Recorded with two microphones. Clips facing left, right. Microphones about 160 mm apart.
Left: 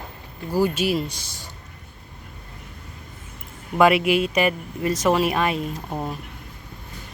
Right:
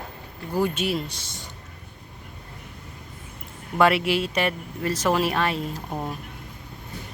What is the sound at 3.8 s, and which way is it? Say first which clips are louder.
Speech: left 3 dB; 10° left (ahead or behind).